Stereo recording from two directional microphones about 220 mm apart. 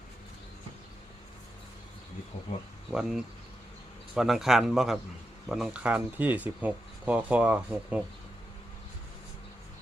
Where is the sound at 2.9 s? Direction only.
5° right (ahead or behind).